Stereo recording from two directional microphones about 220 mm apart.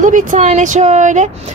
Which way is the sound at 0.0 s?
35° right (ahead or behind).